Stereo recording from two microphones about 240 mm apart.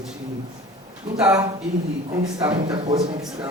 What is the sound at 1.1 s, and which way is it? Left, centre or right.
Speech, centre.